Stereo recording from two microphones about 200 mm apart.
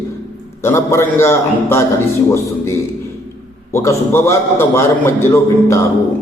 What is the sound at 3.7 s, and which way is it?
A man's voice, 10° left (ahead or behind).